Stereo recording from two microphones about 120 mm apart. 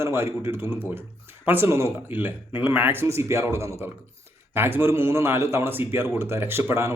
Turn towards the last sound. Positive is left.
turn(degrees=-20)  # may be behind; listen again after turning